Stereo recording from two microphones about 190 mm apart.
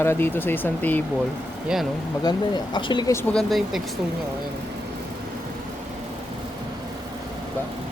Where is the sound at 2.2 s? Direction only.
20° left (ahead or behind).